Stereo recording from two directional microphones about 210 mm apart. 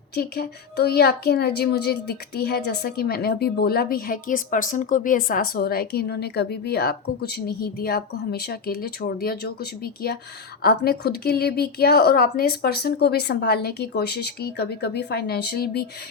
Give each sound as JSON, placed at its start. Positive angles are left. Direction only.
{"t": 0.1, "sound": "speech", "side_deg": 50}